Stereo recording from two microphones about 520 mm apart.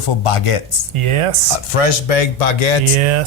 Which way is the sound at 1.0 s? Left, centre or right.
Right.